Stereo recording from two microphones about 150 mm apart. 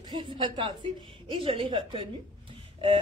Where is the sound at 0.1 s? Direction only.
30° right (ahead or behind).